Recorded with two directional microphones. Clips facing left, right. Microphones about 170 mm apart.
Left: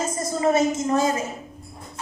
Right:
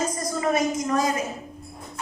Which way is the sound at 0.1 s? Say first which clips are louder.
Left 3 dB; 25° left (ahead or behind).